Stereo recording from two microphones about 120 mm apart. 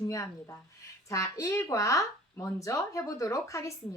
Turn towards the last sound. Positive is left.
turn(degrees=25)  # may be behind; listen again after turning